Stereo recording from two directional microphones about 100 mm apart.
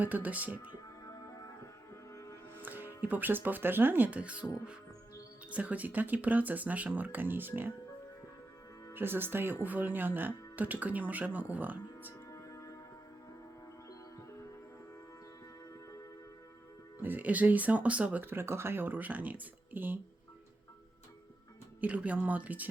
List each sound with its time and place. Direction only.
0.0 s speech: 15° right (ahead or behind)
2.6 s speech: 20° right (ahead or behind)
5.5 s speech: 15° right (ahead or behind)
8.9 s speech: 20° right (ahead or behind)
12.3 s music: 30° left (ahead or behind)
17.0 s speech: 20° right (ahead or behind)
21.8 s speech: 15° right (ahead or behind)